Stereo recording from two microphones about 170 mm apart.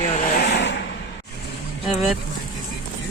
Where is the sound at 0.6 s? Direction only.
90° left.